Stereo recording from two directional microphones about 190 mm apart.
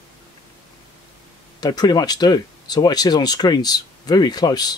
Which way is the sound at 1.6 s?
20° left (ahead or behind).